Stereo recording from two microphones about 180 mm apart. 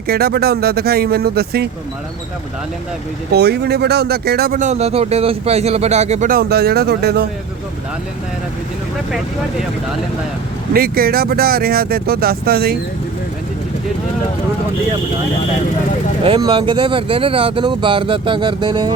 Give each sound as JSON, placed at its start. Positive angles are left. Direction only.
{"t": 0.1, "sound": "speech", "side_deg": -60}
{"t": 3.3, "sound": "speech", "side_deg": -65}
{"t": 10.8, "sound": "speech", "side_deg": -55}
{"t": 16.2, "sound": "speech", "side_deg": -25}